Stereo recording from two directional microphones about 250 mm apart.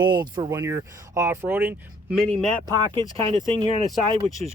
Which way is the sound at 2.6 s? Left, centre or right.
Centre.